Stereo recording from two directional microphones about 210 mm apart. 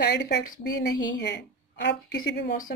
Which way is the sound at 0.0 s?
55° left (ahead or behind).